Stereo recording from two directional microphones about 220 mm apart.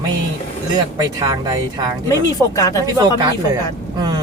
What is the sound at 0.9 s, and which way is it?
Speech, 15° right (ahead or behind).